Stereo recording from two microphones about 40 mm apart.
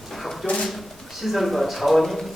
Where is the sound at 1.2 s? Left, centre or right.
Centre.